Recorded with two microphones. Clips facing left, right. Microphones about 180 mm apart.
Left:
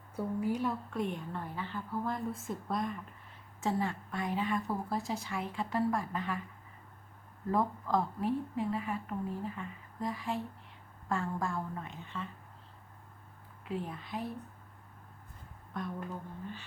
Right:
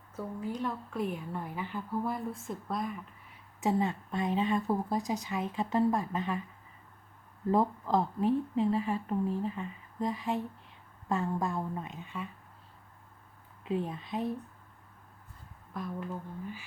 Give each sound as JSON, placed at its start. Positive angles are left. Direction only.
{"t": 0.2, "sound": "speech", "side_deg": 10}
{"t": 3.6, "sound": "speech", "side_deg": -20}
{"t": 7.5, "sound": "speech", "side_deg": -25}
{"t": 13.7, "sound": "speech", "side_deg": -20}
{"t": 15.7, "sound": "speech", "side_deg": -5}